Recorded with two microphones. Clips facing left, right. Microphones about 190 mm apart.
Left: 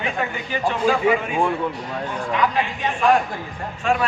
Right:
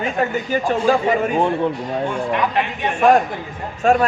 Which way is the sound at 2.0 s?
60° right (ahead or behind).